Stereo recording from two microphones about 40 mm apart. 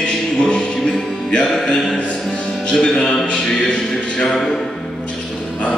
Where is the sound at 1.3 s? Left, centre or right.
Left.